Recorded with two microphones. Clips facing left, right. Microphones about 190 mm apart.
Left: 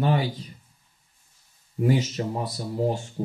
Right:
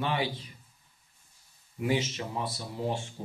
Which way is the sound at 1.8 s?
40° left (ahead or behind).